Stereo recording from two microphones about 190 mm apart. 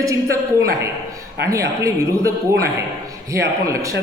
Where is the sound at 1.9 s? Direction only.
15° right (ahead or behind).